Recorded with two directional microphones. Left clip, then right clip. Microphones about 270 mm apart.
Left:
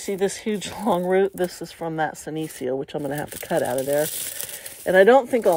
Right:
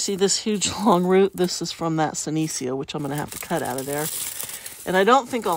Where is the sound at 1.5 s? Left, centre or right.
Centre.